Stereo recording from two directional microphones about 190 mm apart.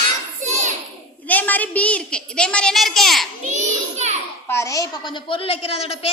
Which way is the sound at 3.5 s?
35° right (ahead or behind).